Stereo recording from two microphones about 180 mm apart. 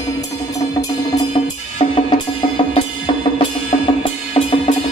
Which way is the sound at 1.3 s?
35° left (ahead or behind).